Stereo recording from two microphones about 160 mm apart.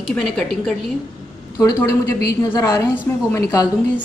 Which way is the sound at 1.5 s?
15° left (ahead or behind).